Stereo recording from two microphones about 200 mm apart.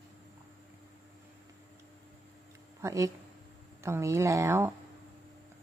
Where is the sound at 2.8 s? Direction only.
15° right (ahead or behind).